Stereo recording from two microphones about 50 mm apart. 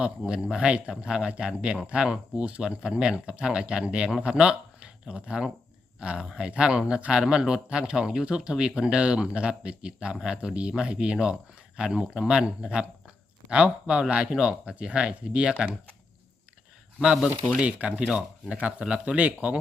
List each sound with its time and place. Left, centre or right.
0.3 s speech: centre
17.6 s speech: right
18.0 s speech: centre